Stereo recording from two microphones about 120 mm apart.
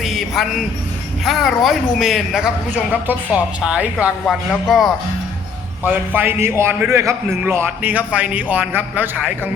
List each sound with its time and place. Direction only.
0.0 s music: centre (ahead or behind)
1.2 s a woman's voice: centre (ahead or behind)
5.8 s a man's voice: 15° right (ahead or behind)